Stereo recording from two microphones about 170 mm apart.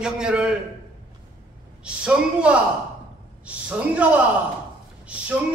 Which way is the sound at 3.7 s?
10° right (ahead or behind).